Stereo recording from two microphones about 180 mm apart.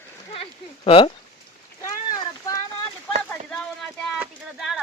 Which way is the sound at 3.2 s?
5° left (ahead or behind).